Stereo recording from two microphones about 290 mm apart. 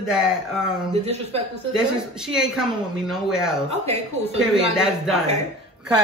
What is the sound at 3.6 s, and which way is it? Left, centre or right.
Speech, right.